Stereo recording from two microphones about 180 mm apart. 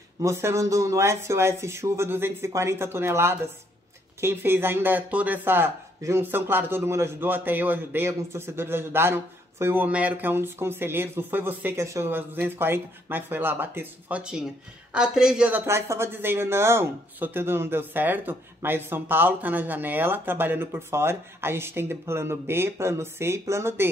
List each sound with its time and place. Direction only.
0.2 s speech: 15° right (ahead or behind)